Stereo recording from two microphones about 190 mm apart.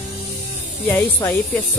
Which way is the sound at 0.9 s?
15° left (ahead or behind).